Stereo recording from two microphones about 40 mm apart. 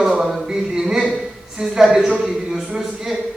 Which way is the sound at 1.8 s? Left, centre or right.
Centre.